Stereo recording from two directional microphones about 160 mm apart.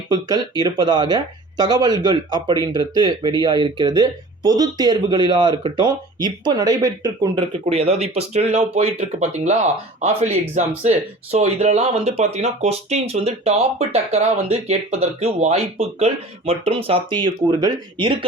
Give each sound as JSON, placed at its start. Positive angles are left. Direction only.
{"t": 0.1, "sound": "speech", "side_deg": -25}
{"t": 7.6, "sound": "speech", "side_deg": -40}